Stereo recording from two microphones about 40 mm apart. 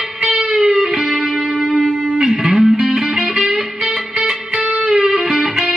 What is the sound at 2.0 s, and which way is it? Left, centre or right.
Music, centre.